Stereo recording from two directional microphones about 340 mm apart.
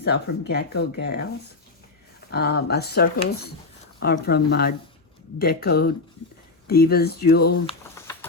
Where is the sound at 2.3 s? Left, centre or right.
Left.